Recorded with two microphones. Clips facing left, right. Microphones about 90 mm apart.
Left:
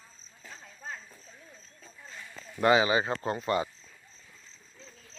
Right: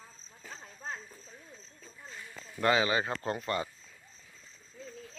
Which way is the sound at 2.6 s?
15° left (ahead or behind).